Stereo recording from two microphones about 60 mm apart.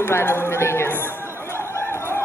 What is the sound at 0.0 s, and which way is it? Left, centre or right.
Chatter, left.